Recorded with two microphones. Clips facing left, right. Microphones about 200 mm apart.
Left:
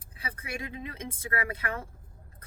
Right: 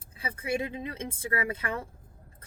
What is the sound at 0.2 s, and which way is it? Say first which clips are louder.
Speech: right 7 dB; 25° right (ahead or behind).